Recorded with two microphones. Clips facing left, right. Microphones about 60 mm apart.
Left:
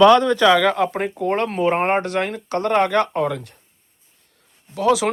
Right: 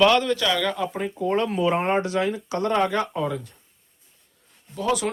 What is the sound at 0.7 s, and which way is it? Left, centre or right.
Speech, left.